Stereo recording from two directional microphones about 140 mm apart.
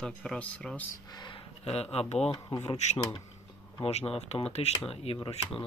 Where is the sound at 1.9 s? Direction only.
45° left (ahead or behind).